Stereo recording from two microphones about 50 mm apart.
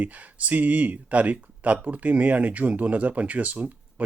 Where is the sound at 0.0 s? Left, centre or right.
Right.